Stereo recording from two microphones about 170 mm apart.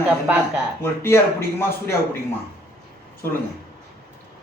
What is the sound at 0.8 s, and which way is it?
Speech, 15° left (ahead or behind).